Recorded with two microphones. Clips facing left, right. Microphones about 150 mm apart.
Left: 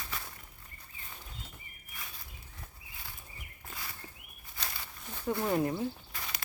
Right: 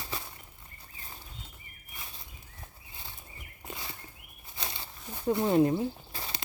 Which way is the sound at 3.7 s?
25° right (ahead or behind).